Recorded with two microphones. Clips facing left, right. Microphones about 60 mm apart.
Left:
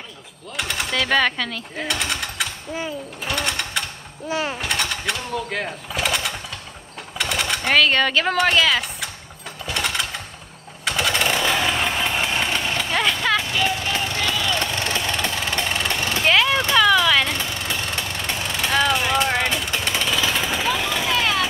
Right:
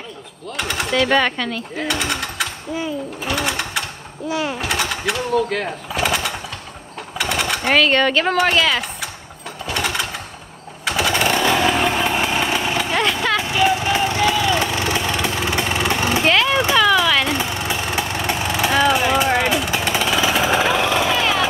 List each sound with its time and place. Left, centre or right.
0.6 s speech: centre
3.3 s sewing machine: centre
4.3 s speech: left
4.6 s speech: centre
5.7 s a sound: centre
7.2 s speech: centre
9.7 s a sound: centre
10.9 s chainsaw: centre
13.5 s vehicle: centre
16.3 s vehicle: centre
17.3 s vehicle: centre
20.6 s jackhammer: right